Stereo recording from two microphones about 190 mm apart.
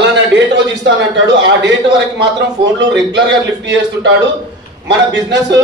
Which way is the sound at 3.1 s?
65° right (ahead or behind).